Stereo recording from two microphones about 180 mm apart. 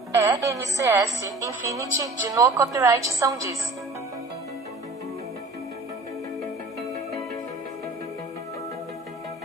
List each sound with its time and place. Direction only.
0.1 s a woman's voice: 15° right (ahead or behind)